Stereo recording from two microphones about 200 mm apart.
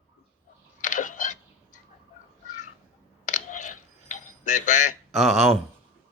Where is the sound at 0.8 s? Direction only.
40° left (ahead or behind).